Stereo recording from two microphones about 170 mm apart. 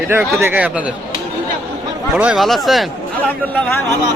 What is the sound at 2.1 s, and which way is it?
Speech, 5° right (ahead or behind).